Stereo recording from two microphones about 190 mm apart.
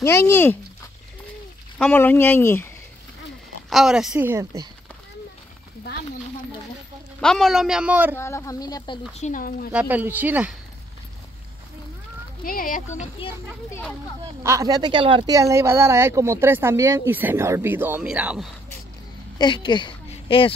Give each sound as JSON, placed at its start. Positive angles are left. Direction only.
{"t": 0.0, "sound": "speech", "side_deg": 15}
{"t": 1.8, "sound": "speech", "side_deg": 10}
{"t": 3.7, "sound": "a man's voice", "side_deg": -5}
{"t": 7.2, "sound": "a man's voice", "side_deg": 0}
{"t": 8.2, "sound": "speech", "side_deg": 15}
{"t": 9.2, "sound": "speech", "side_deg": 45}
{"t": 9.7, "sound": "speech", "side_deg": -5}
{"t": 12.4, "sound": "speech", "side_deg": 45}
{"t": 14.4, "sound": "speech", "side_deg": -15}
{"t": 19.3, "sound": "a woman's voice", "side_deg": 25}